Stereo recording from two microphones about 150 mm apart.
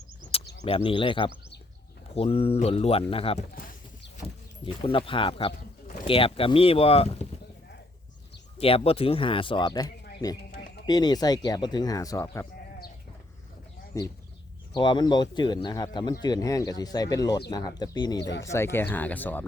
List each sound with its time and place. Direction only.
0.9 s speech: 35° left (ahead or behind)
4.6 s speech: 35° left (ahead or behind)
8.5 s speech: 40° left (ahead or behind); by 12.5 s 20° left (ahead or behind)
13.9 s speech: 20° left (ahead or behind)
18.5 s speech: 15° left (ahead or behind)